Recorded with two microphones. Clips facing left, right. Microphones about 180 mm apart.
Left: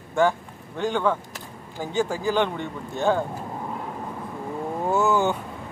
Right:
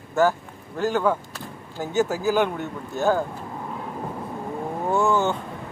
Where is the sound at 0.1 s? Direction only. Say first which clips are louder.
Right 1 dB; 5° right (ahead or behind).